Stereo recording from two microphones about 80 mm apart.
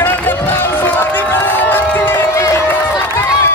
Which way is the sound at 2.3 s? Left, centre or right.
Left.